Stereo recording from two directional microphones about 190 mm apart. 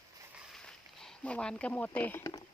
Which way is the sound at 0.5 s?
Centre (ahead or behind).